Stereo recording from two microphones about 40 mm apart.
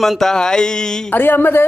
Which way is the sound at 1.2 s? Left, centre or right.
Left.